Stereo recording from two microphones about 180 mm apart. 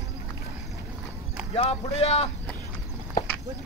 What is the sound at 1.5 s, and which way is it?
Speech, 35° left (ahead or behind).